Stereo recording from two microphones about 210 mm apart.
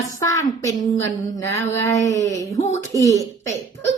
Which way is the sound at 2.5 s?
30° left (ahead or behind).